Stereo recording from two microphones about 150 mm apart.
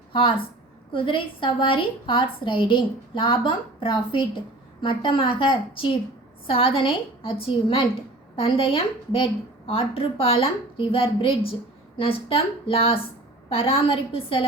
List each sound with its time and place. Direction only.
0.1 s a woman's voice: 35° left (ahead or behind)